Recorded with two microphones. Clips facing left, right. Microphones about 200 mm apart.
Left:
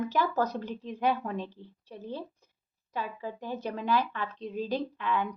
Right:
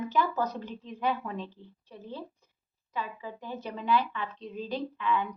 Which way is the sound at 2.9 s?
45° left (ahead or behind).